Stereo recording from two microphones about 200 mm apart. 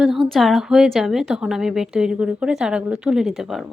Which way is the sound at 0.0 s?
Centre (ahead or behind).